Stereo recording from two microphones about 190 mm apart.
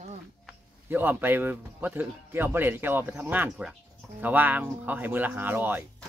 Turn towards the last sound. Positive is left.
turn(degrees=-10)  # may be behind; listen again after turning